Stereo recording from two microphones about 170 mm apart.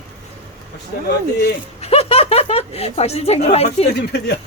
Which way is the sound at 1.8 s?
35° left (ahead or behind).